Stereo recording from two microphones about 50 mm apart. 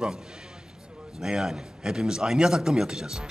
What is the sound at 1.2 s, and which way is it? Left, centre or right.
A man's voice, centre.